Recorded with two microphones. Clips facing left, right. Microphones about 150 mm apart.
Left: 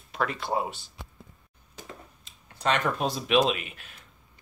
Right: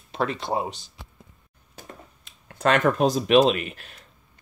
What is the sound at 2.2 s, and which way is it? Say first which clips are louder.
Speech: right 7 dB; 55° right (ahead or behind).